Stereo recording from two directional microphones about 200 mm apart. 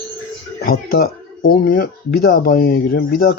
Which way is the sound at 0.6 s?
50° left (ahead or behind).